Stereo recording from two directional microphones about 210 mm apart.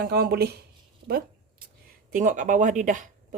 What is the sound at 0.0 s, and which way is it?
Speech, 50° right (ahead or behind).